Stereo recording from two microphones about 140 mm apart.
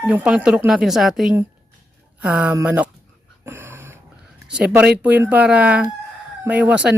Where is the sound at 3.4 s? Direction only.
15° right (ahead or behind).